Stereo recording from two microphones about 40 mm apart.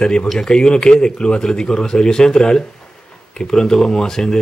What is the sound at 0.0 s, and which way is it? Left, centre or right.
Speech, left.